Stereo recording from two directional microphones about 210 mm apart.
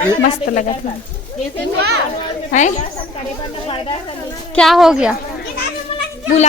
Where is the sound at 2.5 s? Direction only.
35° left (ahead or behind).